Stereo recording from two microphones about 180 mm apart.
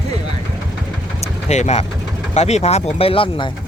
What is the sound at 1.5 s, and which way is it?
Speech, 40° left (ahead or behind).